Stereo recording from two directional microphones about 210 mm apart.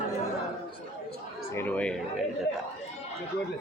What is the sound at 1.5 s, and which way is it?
Speech, 10° left (ahead or behind).